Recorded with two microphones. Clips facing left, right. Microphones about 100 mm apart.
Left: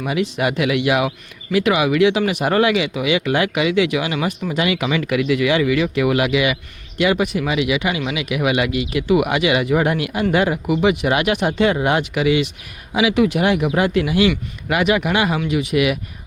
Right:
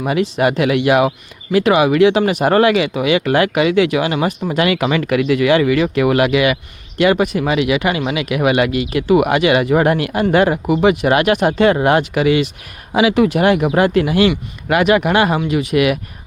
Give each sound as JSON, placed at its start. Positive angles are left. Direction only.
{"t": 0.0, "sound": "speech", "side_deg": -40}